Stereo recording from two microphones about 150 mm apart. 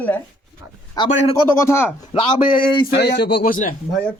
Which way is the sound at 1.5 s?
15° left (ahead or behind).